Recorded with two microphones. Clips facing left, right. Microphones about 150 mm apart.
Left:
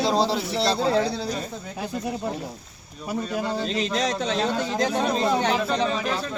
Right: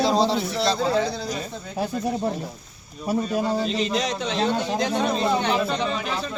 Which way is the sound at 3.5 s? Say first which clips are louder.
Right 2 dB; 5° right (ahead or behind).